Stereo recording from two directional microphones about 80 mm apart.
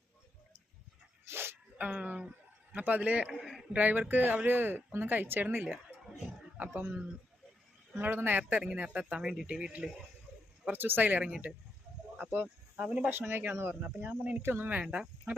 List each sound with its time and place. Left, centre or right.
1.2 s dog: right
1.8 s speech: centre
3.2 s a man's voice: centre
3.7 s speech: centre
6.7 s speech: right
10.7 s speech: right
13.1 s speech: right; by 15.1 s centre